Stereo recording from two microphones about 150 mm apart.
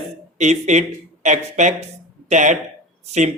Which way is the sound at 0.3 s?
50° right (ahead or behind).